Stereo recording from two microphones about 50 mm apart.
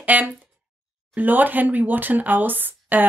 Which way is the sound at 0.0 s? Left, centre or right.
Right.